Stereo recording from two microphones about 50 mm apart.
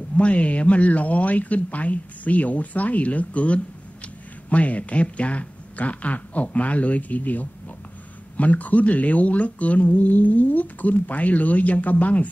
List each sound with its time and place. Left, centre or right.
0.2 s speech: left